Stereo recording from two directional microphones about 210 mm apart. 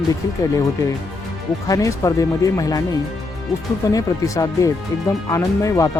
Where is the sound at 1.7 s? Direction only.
15° left (ahead or behind).